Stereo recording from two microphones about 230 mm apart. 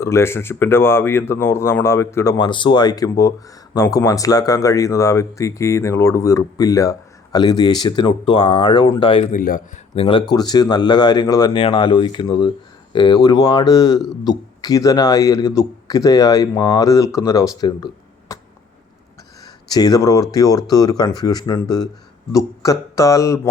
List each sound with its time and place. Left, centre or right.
0.0 s speech: centre
9.3 s speech: left; by 18.3 s centre
19.6 s speech: centre